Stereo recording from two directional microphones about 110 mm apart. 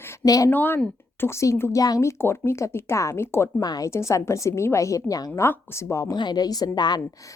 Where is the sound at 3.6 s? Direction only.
35° left (ahead or behind).